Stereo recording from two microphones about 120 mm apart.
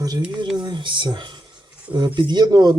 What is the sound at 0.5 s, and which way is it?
Speech, 40° right (ahead or behind).